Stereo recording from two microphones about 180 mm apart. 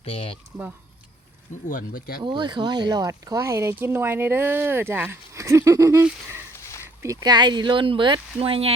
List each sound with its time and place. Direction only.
0.0 s speech: 30° left (ahead or behind)
1.6 s speech: 50° left (ahead or behind)
2.2 s speech: 25° right (ahead or behind)
6.1 s a sound: 10° right (ahead or behind)
7.0 s speech: 20° right (ahead or behind)